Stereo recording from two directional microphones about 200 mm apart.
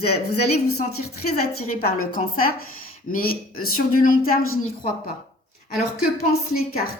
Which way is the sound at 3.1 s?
45° left (ahead or behind).